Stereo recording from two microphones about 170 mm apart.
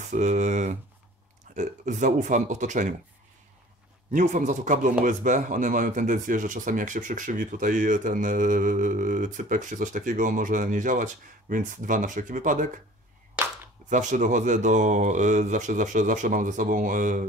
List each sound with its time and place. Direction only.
0.1 s speech: 45° right (ahead or behind)
4.1 s speech: 45° right (ahead or behind)
13.8 s speech: 45° right (ahead or behind)